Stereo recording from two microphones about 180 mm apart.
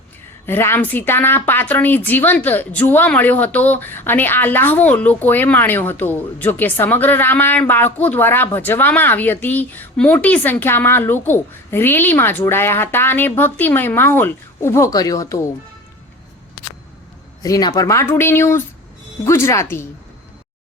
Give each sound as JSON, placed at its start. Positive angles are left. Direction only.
{"t": 0.4, "sound": "a woman's voice", "side_deg": 10}
{"t": 17.4, "sound": "a woman's voice", "side_deg": 20}